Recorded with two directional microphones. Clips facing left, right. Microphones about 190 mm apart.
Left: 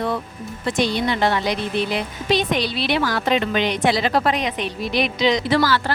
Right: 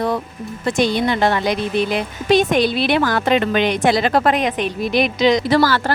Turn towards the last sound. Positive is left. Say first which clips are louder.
# right 3 dB
turn(degrees=-45)  # may be behind; listen again after turning